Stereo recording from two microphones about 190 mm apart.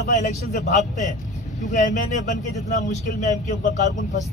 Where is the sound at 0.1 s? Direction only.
40° left (ahead or behind).